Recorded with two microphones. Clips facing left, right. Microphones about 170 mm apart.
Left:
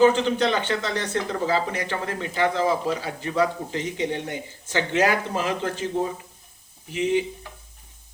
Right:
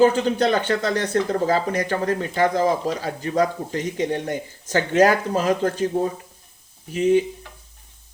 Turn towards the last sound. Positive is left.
turn(degrees=-45)  # may be behind; listen again after turning